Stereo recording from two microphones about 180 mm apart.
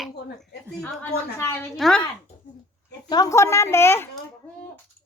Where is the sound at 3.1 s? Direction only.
20° left (ahead or behind).